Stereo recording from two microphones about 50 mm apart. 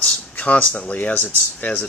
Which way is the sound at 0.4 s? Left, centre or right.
Left.